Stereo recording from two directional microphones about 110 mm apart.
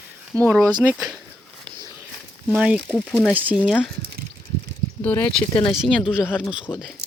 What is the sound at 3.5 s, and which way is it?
Speech, centre (ahead or behind).